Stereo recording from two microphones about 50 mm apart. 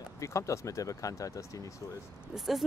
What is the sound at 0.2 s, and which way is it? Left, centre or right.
Speech, left.